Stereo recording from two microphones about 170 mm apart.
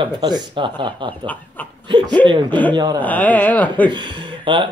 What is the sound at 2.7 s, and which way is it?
Speech, 20° right (ahead or behind).